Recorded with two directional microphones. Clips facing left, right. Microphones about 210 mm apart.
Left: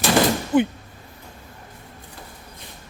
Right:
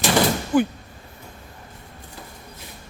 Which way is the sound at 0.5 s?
25° left (ahead or behind).